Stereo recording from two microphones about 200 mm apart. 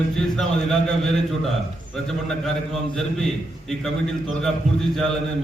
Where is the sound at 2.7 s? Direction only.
Centre (ahead or behind).